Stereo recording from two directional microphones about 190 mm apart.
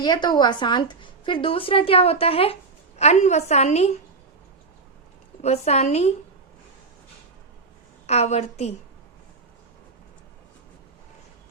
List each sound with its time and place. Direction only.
0.0 s a woman's voice: 20° left (ahead or behind)
5.4 s a woman's voice: 35° left (ahead or behind)
8.0 s a woman's voice: 35° left (ahead or behind)